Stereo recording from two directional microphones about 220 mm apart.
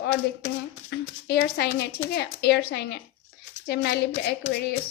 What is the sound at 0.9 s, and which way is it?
A woman's voice, 50° left (ahead or behind).